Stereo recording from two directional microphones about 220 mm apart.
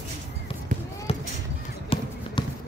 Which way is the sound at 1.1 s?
25° left (ahead or behind).